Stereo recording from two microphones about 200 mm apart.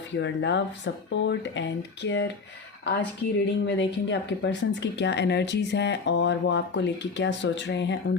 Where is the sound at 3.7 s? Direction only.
60° left (ahead or behind).